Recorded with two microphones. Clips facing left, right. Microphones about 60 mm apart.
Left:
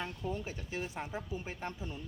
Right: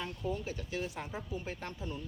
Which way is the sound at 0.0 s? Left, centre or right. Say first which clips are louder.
Right 1 dB; left.